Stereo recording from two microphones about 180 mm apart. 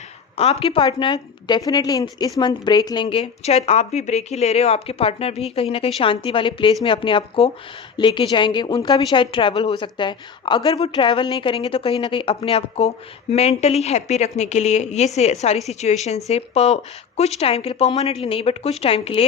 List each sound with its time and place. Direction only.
0.3 s a woman's voice: 35° left (ahead or behind)